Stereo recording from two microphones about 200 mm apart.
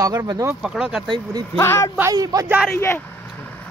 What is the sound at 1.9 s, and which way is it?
Speech, 15° right (ahead or behind).